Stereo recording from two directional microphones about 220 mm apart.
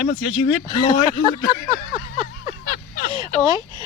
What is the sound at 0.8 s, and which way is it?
Speech, 20° left (ahead or behind).